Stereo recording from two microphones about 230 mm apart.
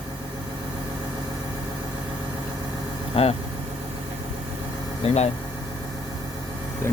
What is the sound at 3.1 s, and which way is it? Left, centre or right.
Vehicle, left.